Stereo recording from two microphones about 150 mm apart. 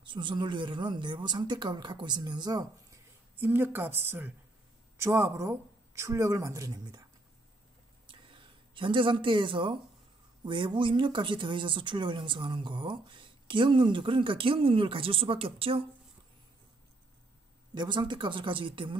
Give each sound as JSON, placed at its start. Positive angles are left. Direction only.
{"t": 0.0, "sound": "speech", "side_deg": -30}
{"t": 3.3, "sound": "speech", "side_deg": -15}
{"t": 8.1, "sound": "a sound", "side_deg": -35}
{"t": 10.4, "sound": "speech", "side_deg": -30}
{"t": 17.7, "sound": "speech", "side_deg": -30}